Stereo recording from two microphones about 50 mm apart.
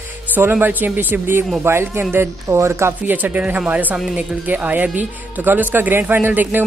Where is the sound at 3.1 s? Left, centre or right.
Right.